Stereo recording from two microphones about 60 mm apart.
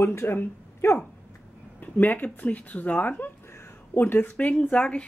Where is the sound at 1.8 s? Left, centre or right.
Left.